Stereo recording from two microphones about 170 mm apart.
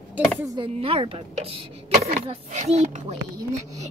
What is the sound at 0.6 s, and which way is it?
A woman's voice, 35° right (ahead or behind).